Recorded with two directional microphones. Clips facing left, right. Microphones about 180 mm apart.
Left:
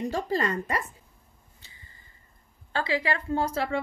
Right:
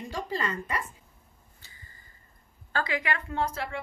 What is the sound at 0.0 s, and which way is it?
Speech, 40° left (ahead or behind).